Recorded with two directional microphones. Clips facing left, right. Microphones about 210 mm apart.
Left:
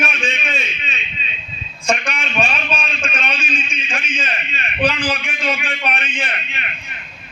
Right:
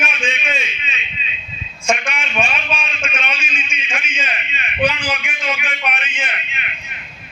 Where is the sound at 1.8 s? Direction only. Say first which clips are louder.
Even; 35° left (ahead or behind).